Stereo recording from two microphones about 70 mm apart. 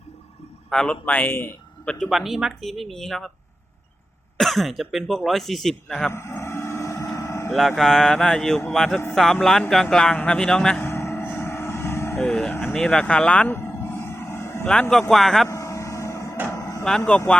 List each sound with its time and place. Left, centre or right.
0.7 s a man's voice: centre; by 1.5 s left
1.8 s speech: centre
2.0 s speech: centre
4.4 s speech: centre
6.1 s vehicle: left
7.8 s a man's voice: centre
10.8 s vehicle: left
12.2 s a man's voice: centre
13.5 s vehicle: left
14.7 s a man's voice: centre
15.4 s vehicle: left
16.5 s cattle: left